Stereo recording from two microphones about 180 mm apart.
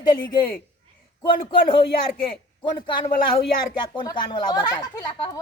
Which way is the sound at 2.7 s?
25° left (ahead or behind).